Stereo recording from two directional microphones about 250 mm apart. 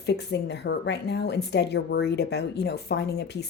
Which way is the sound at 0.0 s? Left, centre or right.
Left.